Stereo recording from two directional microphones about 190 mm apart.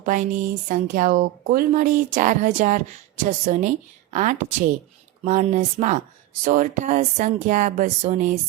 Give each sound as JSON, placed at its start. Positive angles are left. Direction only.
{"t": 0.0, "sound": "speech", "side_deg": -45}